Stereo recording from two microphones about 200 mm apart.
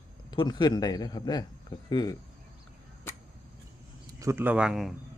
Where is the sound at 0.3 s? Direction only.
20° left (ahead or behind).